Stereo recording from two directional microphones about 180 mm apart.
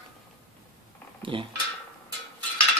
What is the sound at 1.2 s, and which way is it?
Dishes, 30° right (ahead or behind).